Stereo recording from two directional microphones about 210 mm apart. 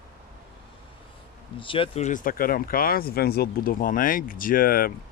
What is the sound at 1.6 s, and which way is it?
Speech, 25° left (ahead or behind).